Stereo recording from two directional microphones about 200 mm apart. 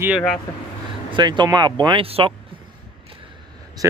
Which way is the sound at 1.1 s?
25° right (ahead or behind).